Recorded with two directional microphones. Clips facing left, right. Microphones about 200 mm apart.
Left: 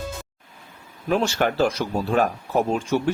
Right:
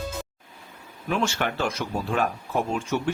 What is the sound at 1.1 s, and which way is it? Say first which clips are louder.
Speech: left 5 dB; 35° left (ahead or behind).